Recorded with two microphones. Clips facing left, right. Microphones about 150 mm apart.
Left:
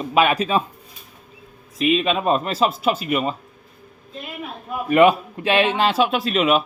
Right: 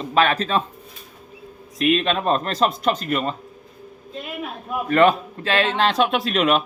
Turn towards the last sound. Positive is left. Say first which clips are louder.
# left 1 dB
turn(degrees=0)  # may be behind; listen again after turning